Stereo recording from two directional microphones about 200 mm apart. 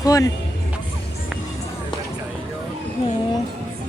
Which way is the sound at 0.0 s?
20° left (ahead or behind).